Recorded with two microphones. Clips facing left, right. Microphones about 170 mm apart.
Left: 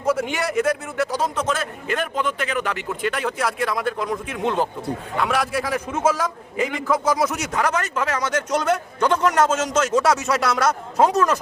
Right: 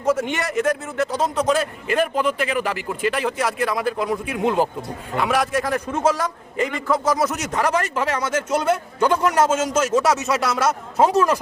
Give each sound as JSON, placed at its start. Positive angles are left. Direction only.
{"t": 0.2, "sound": "a man's voice", "side_deg": 0}